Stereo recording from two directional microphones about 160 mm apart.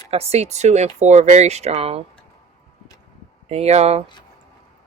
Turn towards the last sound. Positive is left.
turn(degrees=-40)  # may be behind; listen again after turning